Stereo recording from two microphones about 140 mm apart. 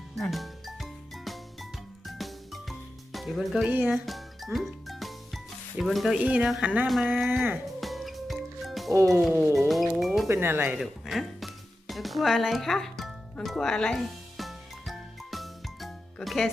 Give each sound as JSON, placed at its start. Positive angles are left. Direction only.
{"t": 0.2, "sound": "music", "side_deg": 0}
{"t": 3.7, "sound": "speech", "side_deg": -15}
{"t": 3.9, "sound": "music", "side_deg": 0}
{"t": 4.5, "sound": "speech", "side_deg": 0}
{"t": 7.8, "sound": "music", "side_deg": 0}
{"t": 9.3, "sound": "speech", "side_deg": -15}
{"t": 9.6, "sound": "music", "side_deg": 0}
{"t": 10.2, "sound": "speech", "side_deg": -15}
{"t": 10.8, "sound": "music", "side_deg": 0}